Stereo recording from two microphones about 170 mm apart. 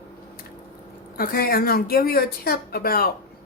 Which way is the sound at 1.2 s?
60° left (ahead or behind).